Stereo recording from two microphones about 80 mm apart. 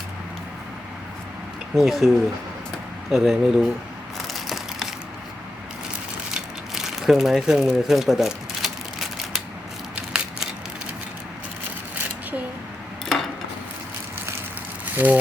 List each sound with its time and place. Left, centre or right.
1.7 s speech: centre
4.2 s crushing: centre
6.3 s a sound: centre
14.9 s speech: right